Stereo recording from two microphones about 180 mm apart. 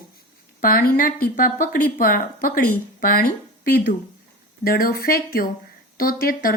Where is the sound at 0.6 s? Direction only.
55° left (ahead or behind).